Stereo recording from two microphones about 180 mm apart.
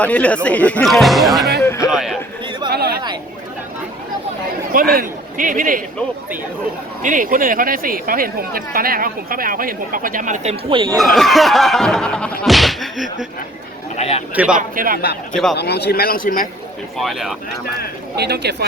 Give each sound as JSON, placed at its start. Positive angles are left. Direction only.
{"t": 0.0, "sound": "speech", "side_deg": 5}
{"t": 1.6, "sound": "a sound", "side_deg": 15}
{"t": 1.9, "sound": "a sound", "side_deg": 0}
{"t": 2.6, "sound": "a sound", "side_deg": -60}
{"t": 4.7, "sound": "speech", "side_deg": -55}
{"t": 7.0, "sound": "speech", "side_deg": -45}
{"t": 10.8, "sound": "speech", "side_deg": 0}
{"t": 13.9, "sound": "speech", "side_deg": 35}
{"t": 14.5, "sound": "speech", "side_deg": -50}
{"t": 15.3, "sound": "speech", "side_deg": 5}
{"t": 15.5, "sound": "a man's voice", "side_deg": 65}
{"t": 17.0, "sound": "speech", "side_deg": 0}
{"t": 18.2, "sound": "speech", "side_deg": -65}